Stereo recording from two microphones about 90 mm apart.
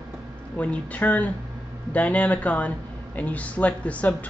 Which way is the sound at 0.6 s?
15° left (ahead or behind).